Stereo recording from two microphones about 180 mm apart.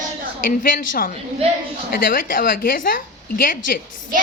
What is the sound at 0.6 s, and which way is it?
A woman's voice, 50° left (ahead or behind).